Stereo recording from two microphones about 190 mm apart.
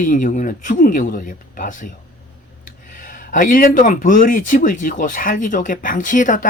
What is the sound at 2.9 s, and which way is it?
Speech, 45° left (ahead or behind).